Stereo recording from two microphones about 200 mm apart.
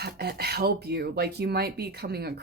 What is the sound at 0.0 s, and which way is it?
Speech, 50° right (ahead or behind).